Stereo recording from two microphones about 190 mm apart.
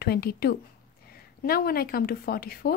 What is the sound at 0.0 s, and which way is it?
A woman's voice, 55° left (ahead or behind).